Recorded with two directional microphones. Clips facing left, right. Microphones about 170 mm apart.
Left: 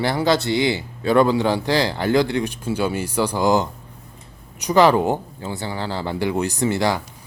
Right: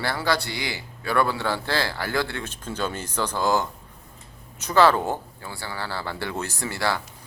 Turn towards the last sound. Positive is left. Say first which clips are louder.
# left 7 dB
turn(degrees=20)  # may be behind; listen again after turning